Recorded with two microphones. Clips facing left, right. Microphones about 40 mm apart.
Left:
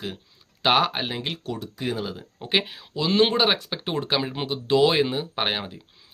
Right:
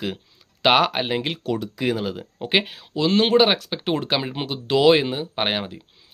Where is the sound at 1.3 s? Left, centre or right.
Right.